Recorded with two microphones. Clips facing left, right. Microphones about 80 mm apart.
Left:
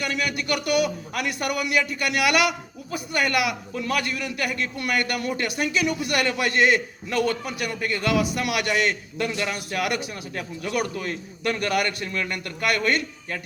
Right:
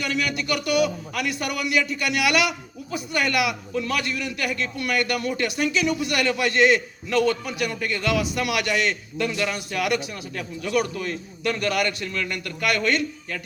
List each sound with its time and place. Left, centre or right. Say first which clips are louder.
0.4 s a man's voice: even; left
9.2 s speech: right 1 dB; left
9.7 s a man's voice: right 1 dB; left